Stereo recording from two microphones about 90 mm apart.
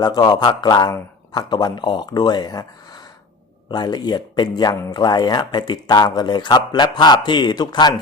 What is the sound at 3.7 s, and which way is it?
Speech, 50° left (ahead or behind).